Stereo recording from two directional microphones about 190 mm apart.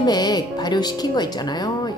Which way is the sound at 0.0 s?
20° left (ahead or behind).